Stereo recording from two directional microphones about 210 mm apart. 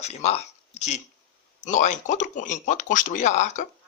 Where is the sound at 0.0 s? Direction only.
30° left (ahead or behind).